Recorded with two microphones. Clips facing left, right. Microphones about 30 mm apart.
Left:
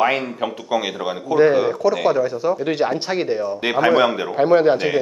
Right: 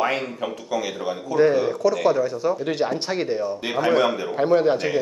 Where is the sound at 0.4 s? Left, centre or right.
Left.